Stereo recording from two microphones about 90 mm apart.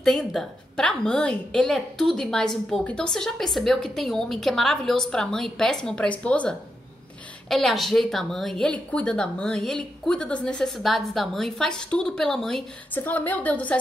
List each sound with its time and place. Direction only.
0.0 s a woman's voice: 5° left (ahead or behind)
7.4 s a woman's voice: 5° left (ahead or behind)
8.6 s a woman's voice: 15° left (ahead or behind)
12.9 s a woman's voice: 20° left (ahead or behind)